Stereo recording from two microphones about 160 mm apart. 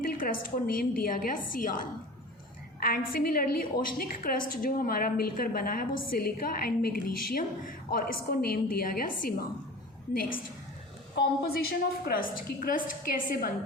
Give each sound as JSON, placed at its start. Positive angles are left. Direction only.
{"t": 0.0, "sound": "a woman's voice", "side_deg": 65}
{"t": 3.1, "sound": "a woman's voice", "side_deg": 65}
{"t": 11.2, "sound": "a woman's voice", "side_deg": 75}